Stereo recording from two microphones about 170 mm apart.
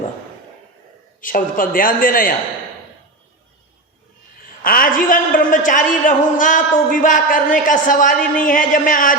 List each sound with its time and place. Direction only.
1.2 s a man's voice: 55° left (ahead or behind)
4.6 s a man's voice: 55° left (ahead or behind)